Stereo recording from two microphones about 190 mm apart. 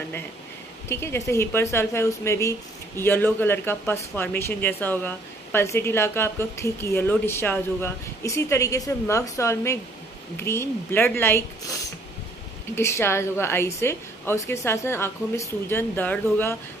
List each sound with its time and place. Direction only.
0.8 s speech: 15° left (ahead or behind)
12.7 s speech: 15° left (ahead or behind)